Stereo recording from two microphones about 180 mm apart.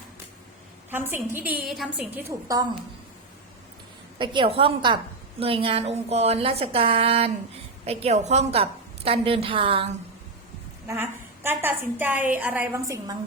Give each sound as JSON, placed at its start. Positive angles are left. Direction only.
{"t": 0.9, "sound": "a woman's voice", "side_deg": -10}
{"t": 4.2, "sound": "a woman's voice", "side_deg": -25}
{"t": 11.4, "sound": "a woman's voice", "side_deg": -10}
{"t": 12.7, "sound": "a woman's voice", "side_deg": -15}